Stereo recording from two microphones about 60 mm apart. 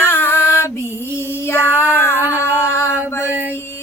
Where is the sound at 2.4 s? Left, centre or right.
Left.